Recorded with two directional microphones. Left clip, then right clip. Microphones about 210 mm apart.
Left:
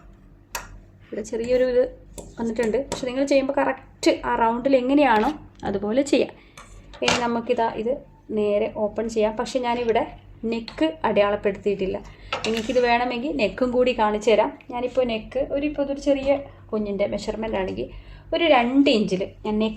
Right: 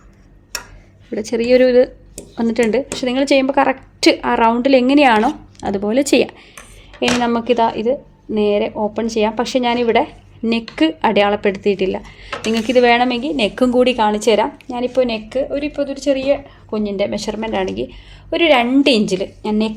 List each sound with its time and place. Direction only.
1.1 s speech: 45° right (ahead or behind)